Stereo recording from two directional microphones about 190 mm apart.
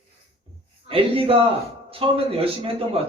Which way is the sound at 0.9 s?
30° right (ahead or behind).